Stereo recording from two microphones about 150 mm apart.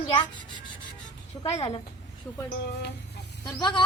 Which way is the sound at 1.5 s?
45° left (ahead or behind).